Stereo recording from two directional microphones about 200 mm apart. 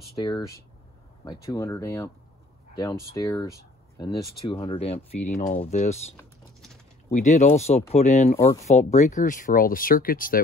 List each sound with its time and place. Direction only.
0.2 s speech: 20° left (ahead or behind); by 5.9 s 35° left (ahead or behind)
6.1 s a sound: centre (ahead or behind)
7.1 s speech: 35° left (ahead or behind)